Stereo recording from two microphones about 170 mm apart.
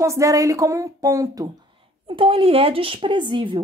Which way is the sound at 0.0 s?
15° right (ahead or behind).